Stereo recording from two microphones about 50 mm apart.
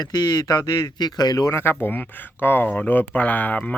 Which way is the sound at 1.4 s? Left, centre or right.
Left.